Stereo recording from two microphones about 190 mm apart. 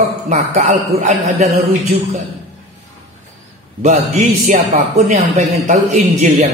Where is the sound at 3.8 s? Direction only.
35° right (ahead or behind).